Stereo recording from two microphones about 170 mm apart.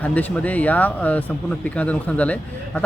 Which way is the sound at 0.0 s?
10° left (ahead or behind).